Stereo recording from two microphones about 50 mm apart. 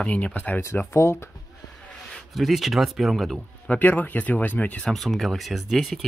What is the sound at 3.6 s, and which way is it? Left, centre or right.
Speech, left.